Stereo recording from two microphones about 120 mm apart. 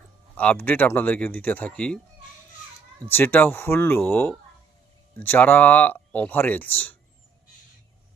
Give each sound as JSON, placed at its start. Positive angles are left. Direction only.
{"t": 0.3, "sound": "speech", "side_deg": 15}
{"t": 3.1, "sound": "speech", "side_deg": 15}